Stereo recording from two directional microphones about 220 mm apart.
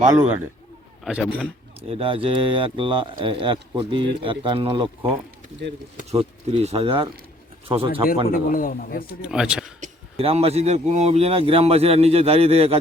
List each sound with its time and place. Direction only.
1.0 s speech: 5° right (ahead or behind)
1.9 s speech: 25° right (ahead or behind)
8.3 s speech: 40° left (ahead or behind)
9.0 s speech: 5° right (ahead or behind)
9.8 s speech: 25° right (ahead or behind)